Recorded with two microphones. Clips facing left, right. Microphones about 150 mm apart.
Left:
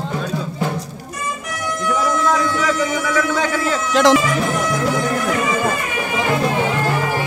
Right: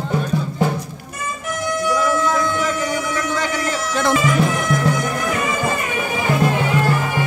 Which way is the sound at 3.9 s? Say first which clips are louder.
Left 6 dB; 90° left.